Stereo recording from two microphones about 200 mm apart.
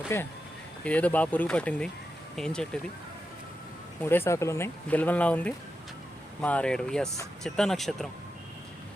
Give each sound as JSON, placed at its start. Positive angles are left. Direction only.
{"t": 0.1, "sound": "speech", "side_deg": 10}
{"t": 4.0, "sound": "speech", "side_deg": 10}